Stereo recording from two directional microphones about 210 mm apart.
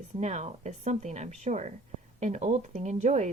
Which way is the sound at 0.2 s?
30° right (ahead or behind).